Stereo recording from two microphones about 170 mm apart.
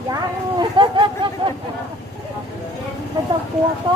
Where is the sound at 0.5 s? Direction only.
30° right (ahead or behind).